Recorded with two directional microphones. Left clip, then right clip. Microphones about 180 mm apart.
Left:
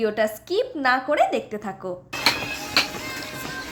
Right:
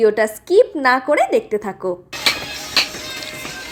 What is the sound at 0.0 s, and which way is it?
A woman's voice, 25° right (ahead or behind).